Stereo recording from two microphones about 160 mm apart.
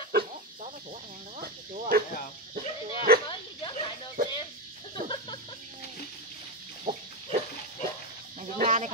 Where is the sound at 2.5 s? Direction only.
65° right (ahead or behind).